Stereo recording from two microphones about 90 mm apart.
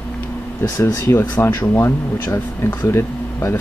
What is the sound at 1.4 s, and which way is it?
Speech, 30° left (ahead or behind).